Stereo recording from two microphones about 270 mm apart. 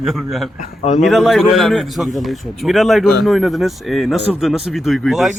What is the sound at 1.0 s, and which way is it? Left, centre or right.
A man's voice, centre.